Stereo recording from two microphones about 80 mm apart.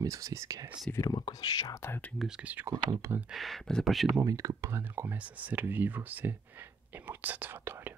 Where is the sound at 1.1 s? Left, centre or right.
Left.